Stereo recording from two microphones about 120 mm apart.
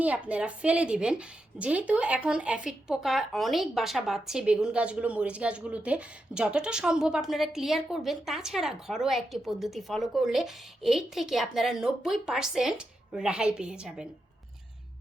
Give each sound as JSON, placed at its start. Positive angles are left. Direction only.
{"t": 0.0, "sound": "speech", "side_deg": -10}